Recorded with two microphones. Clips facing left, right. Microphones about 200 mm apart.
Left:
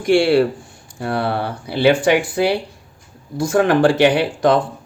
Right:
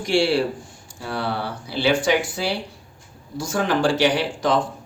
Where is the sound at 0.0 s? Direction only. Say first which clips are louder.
Left 6 dB; 55° left (ahead or behind).